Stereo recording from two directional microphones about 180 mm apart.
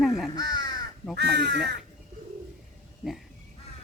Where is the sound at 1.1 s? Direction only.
65° right (ahead or behind).